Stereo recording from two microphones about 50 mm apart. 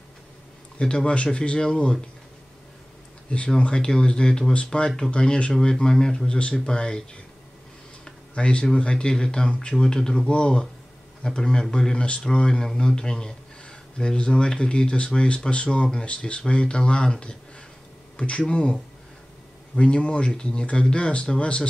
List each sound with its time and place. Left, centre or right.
0.7 s speech: centre
3.3 s speech: centre
8.0 s a sound: left
8.7 s speech: centre
18.1 s a sound: left
18.5 s speech: left